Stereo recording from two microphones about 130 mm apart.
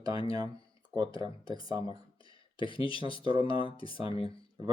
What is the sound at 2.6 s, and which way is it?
Speech, 40° left (ahead or behind).